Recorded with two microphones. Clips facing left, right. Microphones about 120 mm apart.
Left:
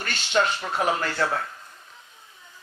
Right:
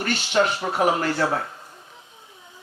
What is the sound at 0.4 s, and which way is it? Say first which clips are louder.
Speech: right 3 dB; 15° right (ahead or behind).